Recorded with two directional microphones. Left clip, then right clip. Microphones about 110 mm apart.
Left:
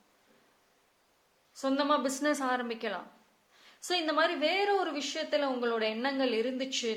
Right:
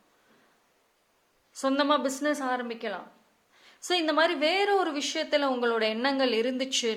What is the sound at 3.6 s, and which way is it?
Speech, 20° right (ahead or behind).